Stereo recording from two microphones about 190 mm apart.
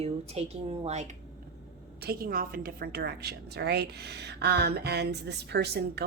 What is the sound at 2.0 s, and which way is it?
A woman's voice, 55° right (ahead or behind).